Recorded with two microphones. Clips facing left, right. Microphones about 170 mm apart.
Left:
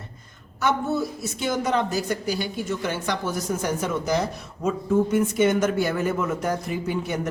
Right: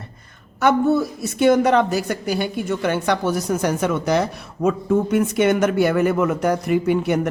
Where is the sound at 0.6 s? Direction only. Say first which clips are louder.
Right 7 dB; 60° right (ahead or behind).